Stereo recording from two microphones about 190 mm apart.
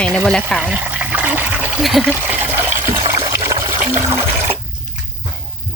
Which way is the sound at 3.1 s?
15° right (ahead or behind).